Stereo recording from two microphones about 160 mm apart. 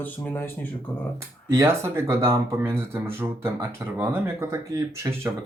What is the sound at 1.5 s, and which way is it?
Speech, 15° right (ahead or behind).